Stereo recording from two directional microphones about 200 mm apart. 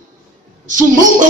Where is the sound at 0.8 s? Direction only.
40° right (ahead or behind).